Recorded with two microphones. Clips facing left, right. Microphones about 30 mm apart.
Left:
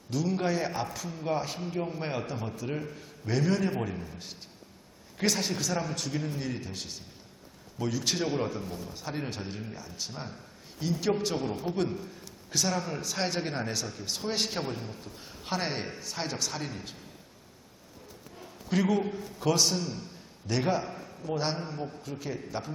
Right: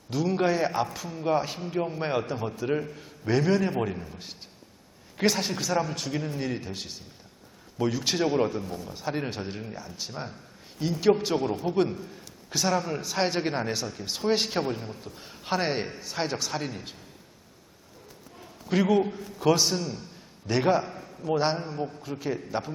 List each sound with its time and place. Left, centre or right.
0.1 s a man's voice: centre
3.2 s a man's voice: centre
18.7 s a man's voice: centre
20.5 s a man's voice: centre
20.9 s a sound: centre
21.2 s a man's voice: centre
21.6 s a man's voice: centre